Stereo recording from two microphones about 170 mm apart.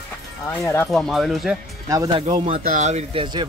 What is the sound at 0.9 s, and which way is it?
Speech, centre (ahead or behind).